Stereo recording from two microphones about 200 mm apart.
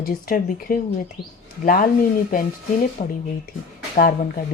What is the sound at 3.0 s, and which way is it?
Speech, 35° left (ahead or behind).